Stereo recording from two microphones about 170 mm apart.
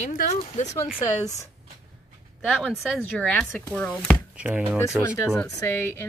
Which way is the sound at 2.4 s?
5° left (ahead or behind).